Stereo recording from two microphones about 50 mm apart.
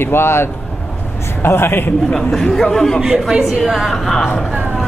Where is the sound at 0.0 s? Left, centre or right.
Left.